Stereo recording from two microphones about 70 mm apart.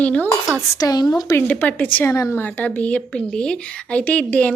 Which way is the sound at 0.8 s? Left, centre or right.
Left.